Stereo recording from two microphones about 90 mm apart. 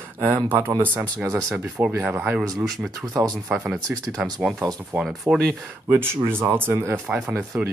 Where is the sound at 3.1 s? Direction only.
45° right (ahead or behind).